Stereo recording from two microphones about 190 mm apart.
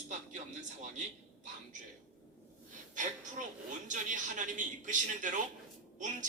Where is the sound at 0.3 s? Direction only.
40° right (ahead or behind).